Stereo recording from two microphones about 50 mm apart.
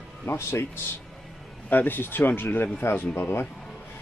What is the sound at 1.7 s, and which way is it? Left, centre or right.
Speech, left.